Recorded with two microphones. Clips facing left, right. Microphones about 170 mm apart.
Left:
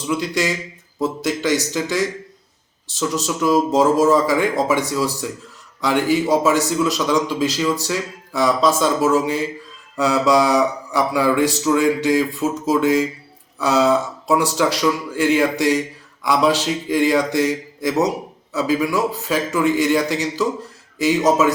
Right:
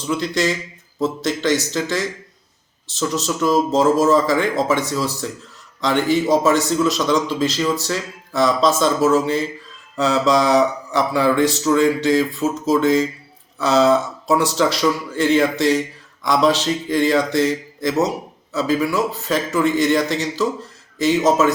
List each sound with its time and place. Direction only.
0.1 s a man's voice: 10° left (ahead or behind)